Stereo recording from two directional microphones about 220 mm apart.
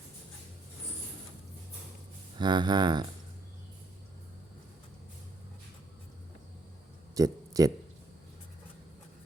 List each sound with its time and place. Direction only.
2.4 s speech: 20° right (ahead or behind)
7.2 s speech: 15° right (ahead or behind)